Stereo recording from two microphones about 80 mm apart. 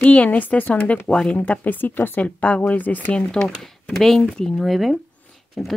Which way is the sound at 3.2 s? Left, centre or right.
Centre.